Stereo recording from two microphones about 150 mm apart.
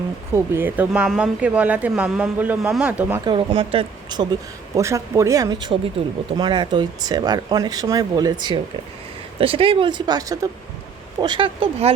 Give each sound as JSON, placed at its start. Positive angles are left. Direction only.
{"t": 0.3, "sound": "speech", "side_deg": -15}
{"t": 3.2, "sound": "speech", "side_deg": -35}
{"t": 4.7, "sound": "speech", "side_deg": -20}